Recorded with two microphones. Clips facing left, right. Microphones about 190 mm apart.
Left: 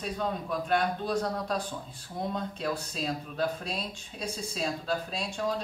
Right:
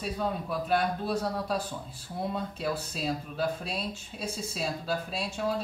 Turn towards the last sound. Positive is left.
turn(degrees=-5)  # may be behind; listen again after turning